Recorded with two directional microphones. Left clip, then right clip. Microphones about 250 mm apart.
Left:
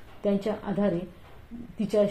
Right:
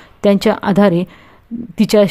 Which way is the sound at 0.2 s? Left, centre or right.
Right.